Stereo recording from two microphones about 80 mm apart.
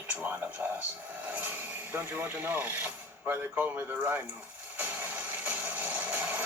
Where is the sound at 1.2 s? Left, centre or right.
Centre.